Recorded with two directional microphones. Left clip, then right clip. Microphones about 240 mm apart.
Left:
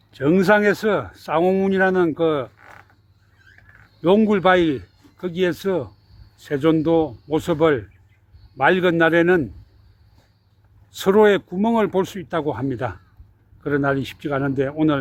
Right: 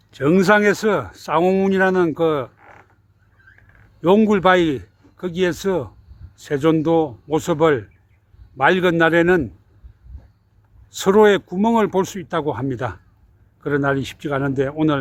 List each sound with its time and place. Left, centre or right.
0.1 s speech: centre
2.6 s a sound: left
4.0 s speech: centre
10.9 s speech: centre